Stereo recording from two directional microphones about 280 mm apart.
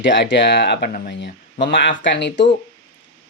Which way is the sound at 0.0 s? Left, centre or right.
Left.